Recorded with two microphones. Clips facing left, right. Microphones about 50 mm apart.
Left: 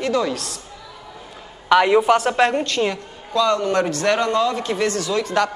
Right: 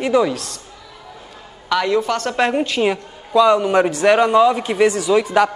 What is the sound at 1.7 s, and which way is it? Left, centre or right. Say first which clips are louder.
Speech: left 4 dB; left.